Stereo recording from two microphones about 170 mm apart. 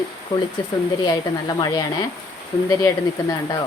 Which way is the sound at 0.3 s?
25° left (ahead or behind).